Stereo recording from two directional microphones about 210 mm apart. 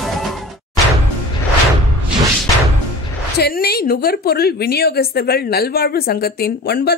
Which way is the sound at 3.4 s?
50° left (ahead or behind).